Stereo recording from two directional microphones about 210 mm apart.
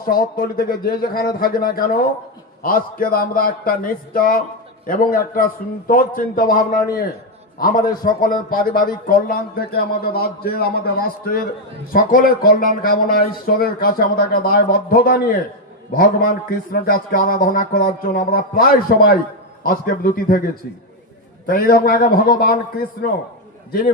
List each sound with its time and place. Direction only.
0.1 s a man's voice: 45° left (ahead or behind)
21.4 s a man's voice: 45° left (ahead or behind)